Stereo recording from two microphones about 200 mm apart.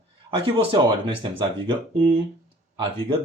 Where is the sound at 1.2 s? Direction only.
25° right (ahead or behind).